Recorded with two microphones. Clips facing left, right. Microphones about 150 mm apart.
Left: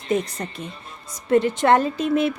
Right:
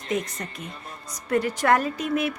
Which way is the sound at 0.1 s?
30° left (ahead or behind).